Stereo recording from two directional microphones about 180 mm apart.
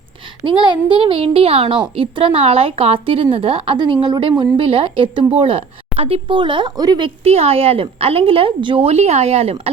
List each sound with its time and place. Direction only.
0.4 s a child's voice: 25° right (ahead or behind)
7.3 s a child's voice: 35° right (ahead or behind)